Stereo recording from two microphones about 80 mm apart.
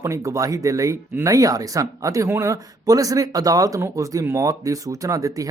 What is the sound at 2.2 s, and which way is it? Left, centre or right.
Speech, right.